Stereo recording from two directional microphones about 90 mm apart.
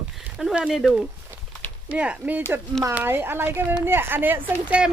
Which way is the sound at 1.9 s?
15° right (ahead or behind).